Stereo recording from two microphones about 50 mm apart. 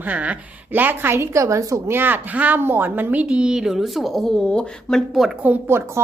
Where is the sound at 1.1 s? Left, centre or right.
Right.